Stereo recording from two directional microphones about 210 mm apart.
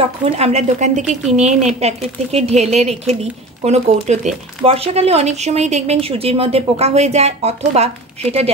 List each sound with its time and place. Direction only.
0.0 s a woman's voice: 30° right (ahead or behind)